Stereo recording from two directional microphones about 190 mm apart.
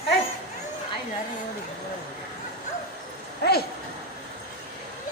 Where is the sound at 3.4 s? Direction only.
55° left (ahead or behind).